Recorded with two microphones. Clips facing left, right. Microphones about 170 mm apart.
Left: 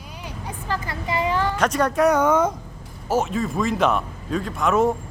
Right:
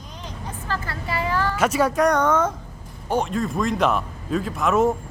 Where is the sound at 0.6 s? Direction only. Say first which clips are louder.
Left 2 dB; 15° left (ahead or behind).